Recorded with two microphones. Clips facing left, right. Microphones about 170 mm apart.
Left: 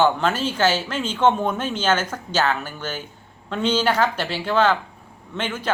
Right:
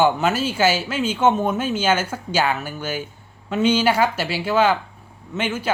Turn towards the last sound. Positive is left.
turn(degrees=-10)  # may be behind; listen again after turning